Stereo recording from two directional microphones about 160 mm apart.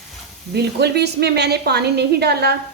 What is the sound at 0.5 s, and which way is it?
A woman's voice, 90° right.